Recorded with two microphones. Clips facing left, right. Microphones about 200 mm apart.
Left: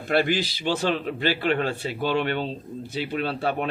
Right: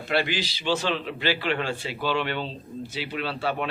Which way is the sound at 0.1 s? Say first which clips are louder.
Left 4 dB; 50° left (ahead or behind).